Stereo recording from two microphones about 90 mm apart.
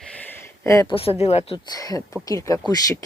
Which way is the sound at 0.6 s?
35° left (ahead or behind).